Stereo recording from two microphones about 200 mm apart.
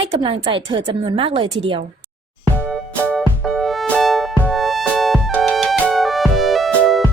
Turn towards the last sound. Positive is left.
turn(degrees=0)  # may be behind; listen again after turning